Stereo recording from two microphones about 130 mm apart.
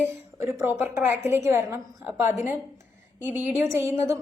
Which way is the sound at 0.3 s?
20° right (ahead or behind).